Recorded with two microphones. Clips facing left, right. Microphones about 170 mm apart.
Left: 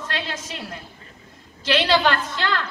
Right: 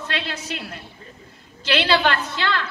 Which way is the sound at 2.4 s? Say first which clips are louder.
Even; 45° left (ahead or behind).